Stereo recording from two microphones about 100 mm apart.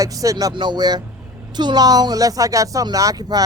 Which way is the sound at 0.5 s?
50° right (ahead or behind).